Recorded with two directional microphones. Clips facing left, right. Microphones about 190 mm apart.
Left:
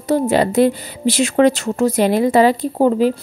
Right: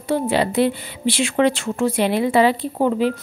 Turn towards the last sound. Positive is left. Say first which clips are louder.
# left 4 dB
turn(degrees=40)  # may be behind; listen again after turning